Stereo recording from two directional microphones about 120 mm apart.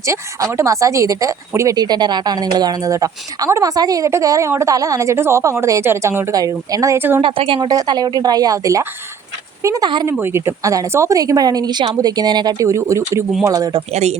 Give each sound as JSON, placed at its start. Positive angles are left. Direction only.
{"t": 0.0, "sound": "speech", "side_deg": -25}
{"t": 7.2, "sound": "a woman's voice", "side_deg": -45}
{"t": 7.7, "sound": "speech", "side_deg": -35}
{"t": 10.1, "sound": "speech", "side_deg": -20}
{"t": 13.9, "sound": "speech", "side_deg": -65}